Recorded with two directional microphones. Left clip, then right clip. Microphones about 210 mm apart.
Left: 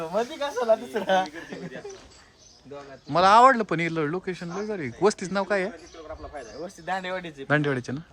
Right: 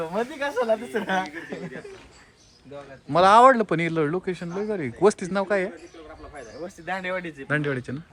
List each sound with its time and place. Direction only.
0.0 s speech: 15° left (ahead or behind)
3.1 s speech: 10° left (ahead or behind)
6.3 s speech: 50° left (ahead or behind)
7.4 s speech: 20° left (ahead or behind)